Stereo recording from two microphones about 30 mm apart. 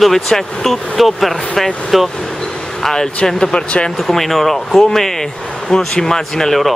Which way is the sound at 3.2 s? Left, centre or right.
Left.